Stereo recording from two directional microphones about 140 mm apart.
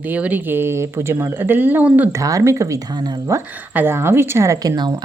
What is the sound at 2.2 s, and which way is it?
A woman's voice, 25° right (ahead or behind).